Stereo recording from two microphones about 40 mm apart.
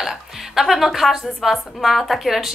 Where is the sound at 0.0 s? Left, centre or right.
Centre.